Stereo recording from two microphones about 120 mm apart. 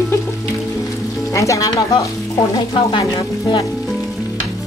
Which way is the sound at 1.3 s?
25° left (ahead or behind).